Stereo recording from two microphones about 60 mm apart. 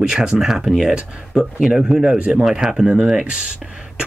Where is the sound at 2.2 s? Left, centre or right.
Centre.